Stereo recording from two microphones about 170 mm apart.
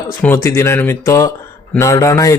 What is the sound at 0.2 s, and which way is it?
A man's voice, 15° left (ahead or behind).